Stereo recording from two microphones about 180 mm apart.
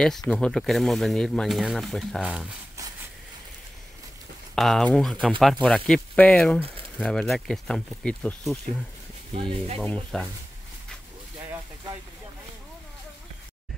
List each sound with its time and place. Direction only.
0.3 s speech: 5° left (ahead or behind)
4.6 s speech: centre (ahead or behind)
9.3 s speech: 30° right (ahead or behind)
9.8 s speech: 5° left (ahead or behind)